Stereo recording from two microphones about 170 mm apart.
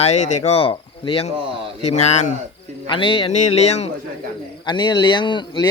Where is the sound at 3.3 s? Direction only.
40° left (ahead or behind).